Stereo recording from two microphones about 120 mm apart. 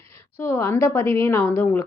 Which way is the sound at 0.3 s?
20° left (ahead or behind).